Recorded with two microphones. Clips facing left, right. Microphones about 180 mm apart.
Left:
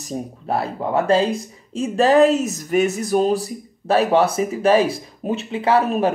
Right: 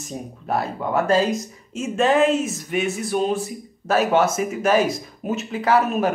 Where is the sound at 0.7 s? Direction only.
30° left (ahead or behind).